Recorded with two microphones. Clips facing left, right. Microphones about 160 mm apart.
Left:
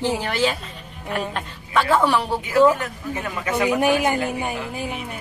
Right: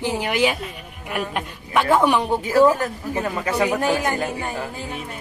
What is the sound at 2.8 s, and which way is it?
Speech, 35° right (ahead or behind).